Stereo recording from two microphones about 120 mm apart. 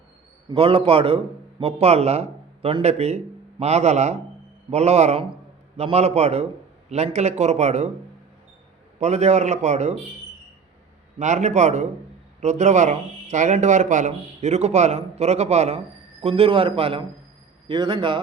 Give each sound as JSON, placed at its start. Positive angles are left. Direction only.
{"t": 0.5, "sound": "a man's voice", "side_deg": -50}
{"t": 9.0, "sound": "speech", "side_deg": -70}
{"t": 11.2, "sound": "speech", "side_deg": -75}
{"t": 16.2, "sound": "a man's voice", "side_deg": -50}
{"t": 17.7, "sound": "a man's voice", "side_deg": -40}